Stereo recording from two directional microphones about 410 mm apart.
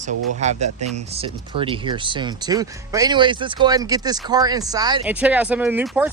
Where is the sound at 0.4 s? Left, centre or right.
Centre.